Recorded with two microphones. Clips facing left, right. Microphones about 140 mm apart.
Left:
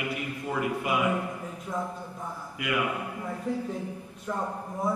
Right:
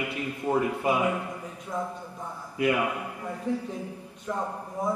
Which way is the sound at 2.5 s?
30° right (ahead or behind).